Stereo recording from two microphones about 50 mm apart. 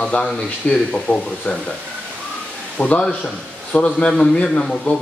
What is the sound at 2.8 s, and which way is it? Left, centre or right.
A man's voice, left.